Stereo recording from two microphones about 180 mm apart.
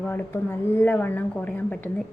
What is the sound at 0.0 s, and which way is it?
A woman's voice, 10° left (ahead or behind).